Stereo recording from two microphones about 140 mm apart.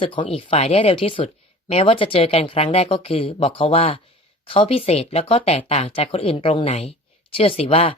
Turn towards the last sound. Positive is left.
turn(degrees=45)  # may be behind; listen again after turning